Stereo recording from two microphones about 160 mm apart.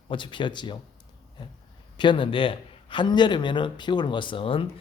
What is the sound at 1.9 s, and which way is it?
A man's voice, 30° left (ahead or behind).